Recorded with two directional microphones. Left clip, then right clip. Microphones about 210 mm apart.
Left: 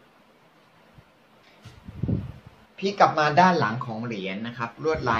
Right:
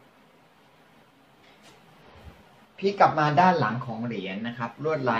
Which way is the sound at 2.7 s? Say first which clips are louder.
Left 1 dB; 35° left (ahead or behind).